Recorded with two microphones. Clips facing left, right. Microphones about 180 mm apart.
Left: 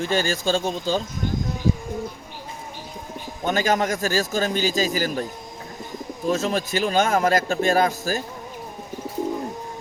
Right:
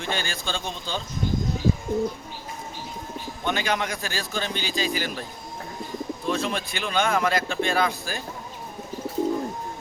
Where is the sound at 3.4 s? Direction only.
45° left (ahead or behind).